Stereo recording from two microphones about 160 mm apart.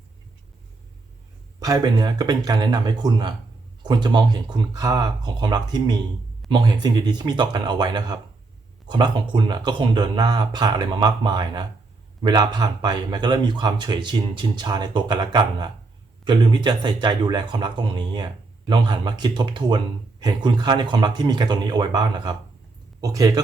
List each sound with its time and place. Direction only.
1.5 s speech: 25° right (ahead or behind)